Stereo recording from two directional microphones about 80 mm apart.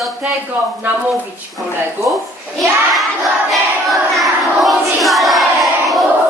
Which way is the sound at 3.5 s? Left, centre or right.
Centre.